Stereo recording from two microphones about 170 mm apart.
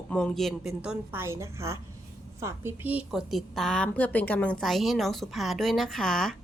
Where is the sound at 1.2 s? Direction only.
15° right (ahead or behind); by 6.3 s centre (ahead or behind).